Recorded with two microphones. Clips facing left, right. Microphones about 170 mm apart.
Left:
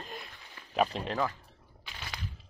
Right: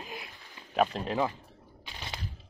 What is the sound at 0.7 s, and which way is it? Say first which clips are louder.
Speech: right 2 dB; centre (ahead or behind).